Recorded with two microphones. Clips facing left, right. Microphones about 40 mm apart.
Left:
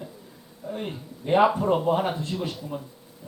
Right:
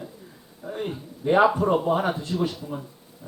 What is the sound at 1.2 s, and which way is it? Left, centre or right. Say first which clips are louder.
Speech: right 1 dB; centre.